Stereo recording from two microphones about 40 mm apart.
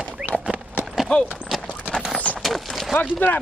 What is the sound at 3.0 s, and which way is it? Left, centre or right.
Speech, left.